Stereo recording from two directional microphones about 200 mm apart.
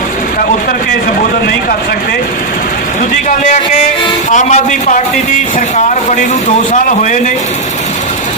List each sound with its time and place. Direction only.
4.3 s a man's voice: 40° left (ahead or behind)